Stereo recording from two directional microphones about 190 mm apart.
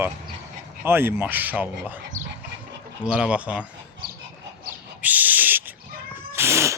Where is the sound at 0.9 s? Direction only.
10° right (ahead or behind).